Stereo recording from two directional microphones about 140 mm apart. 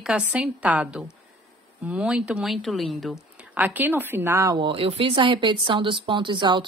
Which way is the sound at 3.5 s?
15° right (ahead or behind).